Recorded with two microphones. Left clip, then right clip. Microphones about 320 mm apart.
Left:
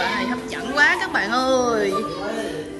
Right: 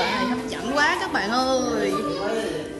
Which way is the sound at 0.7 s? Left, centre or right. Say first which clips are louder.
Left 4 dB; centre.